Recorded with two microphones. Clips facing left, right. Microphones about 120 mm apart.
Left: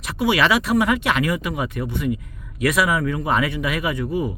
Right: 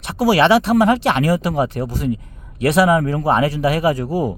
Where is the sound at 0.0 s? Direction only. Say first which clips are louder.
Right 5 dB; 30° right (ahead or behind).